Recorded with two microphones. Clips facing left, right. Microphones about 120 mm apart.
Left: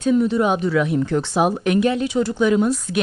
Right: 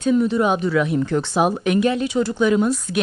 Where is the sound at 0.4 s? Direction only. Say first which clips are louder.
Even; centre (ahead or behind).